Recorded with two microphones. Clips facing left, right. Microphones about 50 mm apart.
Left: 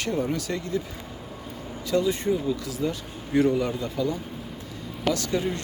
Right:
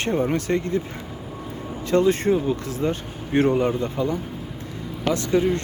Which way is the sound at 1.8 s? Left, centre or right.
Right.